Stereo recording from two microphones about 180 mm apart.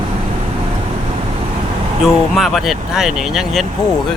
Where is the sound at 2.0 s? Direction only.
Centre (ahead or behind).